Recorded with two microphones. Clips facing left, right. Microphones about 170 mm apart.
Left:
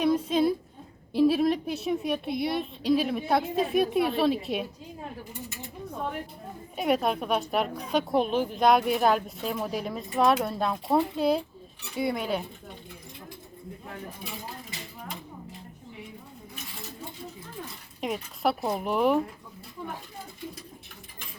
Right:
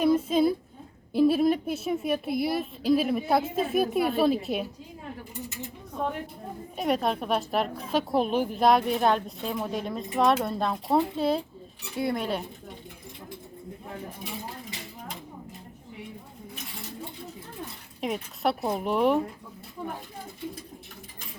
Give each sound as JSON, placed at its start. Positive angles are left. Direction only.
{"t": 0.0, "sound": "a sound", "side_deg": 0}
{"t": 1.1, "sound": "a woman's voice", "side_deg": 0}
{"t": 6.7, "sound": "a woman's voice", "side_deg": 0}
{"t": 18.0, "sound": "a woman's voice", "side_deg": 0}